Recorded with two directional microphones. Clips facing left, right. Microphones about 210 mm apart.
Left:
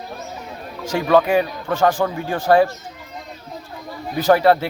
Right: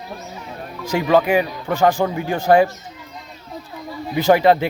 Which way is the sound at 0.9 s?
10° right (ahead or behind).